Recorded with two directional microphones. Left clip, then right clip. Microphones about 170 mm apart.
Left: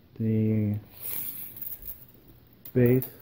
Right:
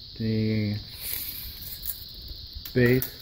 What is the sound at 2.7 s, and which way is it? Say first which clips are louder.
Speech: right 1 dB; 5° left (ahead or behind).